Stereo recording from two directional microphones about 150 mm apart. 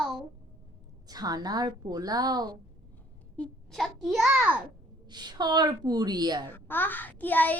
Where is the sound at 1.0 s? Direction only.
25° right (ahead or behind).